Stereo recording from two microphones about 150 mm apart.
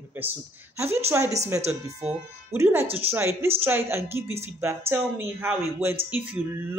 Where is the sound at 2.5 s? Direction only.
15° right (ahead or behind).